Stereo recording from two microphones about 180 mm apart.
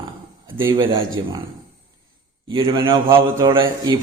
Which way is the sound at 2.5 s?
25° right (ahead or behind).